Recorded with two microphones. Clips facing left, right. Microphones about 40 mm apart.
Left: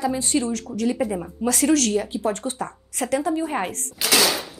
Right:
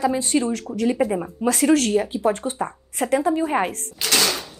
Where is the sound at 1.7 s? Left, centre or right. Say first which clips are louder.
Right 3 dB; right.